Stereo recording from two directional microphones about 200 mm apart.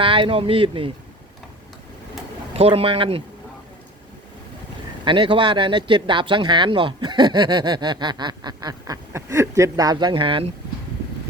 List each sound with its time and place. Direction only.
0.0 s speech: 25° right (ahead or behind)
2.5 s speech: 30° right (ahead or behind)
5.0 s speech: 25° right (ahead or behind)